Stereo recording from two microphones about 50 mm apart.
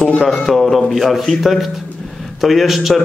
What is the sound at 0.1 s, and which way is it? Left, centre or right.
Speech, centre.